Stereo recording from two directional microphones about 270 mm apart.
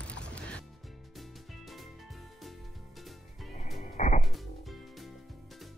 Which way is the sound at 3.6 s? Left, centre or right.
Left.